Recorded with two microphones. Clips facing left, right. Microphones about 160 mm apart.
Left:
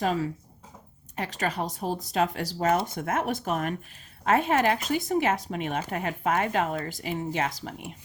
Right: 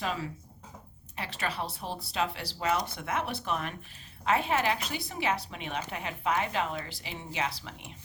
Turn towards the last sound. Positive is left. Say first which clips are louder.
# left 5 dB
turn(degrees=45)  # may be behind; listen again after turning